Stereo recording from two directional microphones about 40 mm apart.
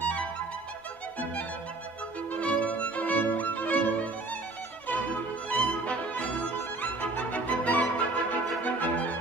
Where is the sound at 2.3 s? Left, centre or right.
Left.